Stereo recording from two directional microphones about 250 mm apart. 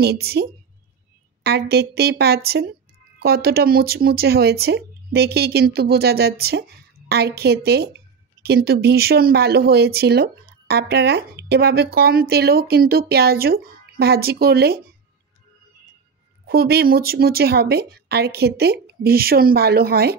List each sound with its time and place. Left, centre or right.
0.0 s speech: right
16.4 s speech: right